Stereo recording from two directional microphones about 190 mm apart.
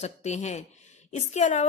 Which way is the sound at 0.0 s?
35° left (ahead or behind).